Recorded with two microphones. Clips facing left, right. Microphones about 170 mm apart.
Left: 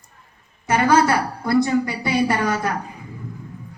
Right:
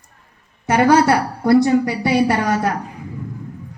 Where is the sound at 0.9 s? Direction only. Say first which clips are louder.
Right 2 dB; 70° right (ahead or behind).